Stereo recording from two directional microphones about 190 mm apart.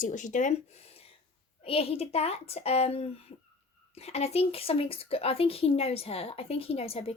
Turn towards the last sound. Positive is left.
turn(degrees=30)  # may be behind; listen again after turning